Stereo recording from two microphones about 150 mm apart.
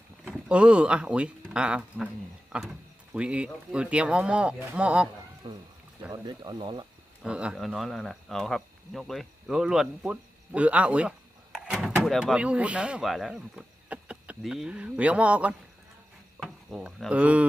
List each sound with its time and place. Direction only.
0.3 s speech: 5° right (ahead or behind)
5.4 s speech: 35° right (ahead or behind)
7.2 s speech: 5° right (ahead or behind)